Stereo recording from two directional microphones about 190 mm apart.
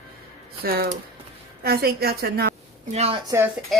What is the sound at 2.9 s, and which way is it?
Speech, 35° right (ahead or behind).